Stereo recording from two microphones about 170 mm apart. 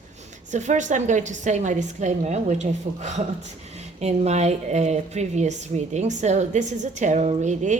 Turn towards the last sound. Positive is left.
turn(degrees=-45)  # may be behind; listen again after turning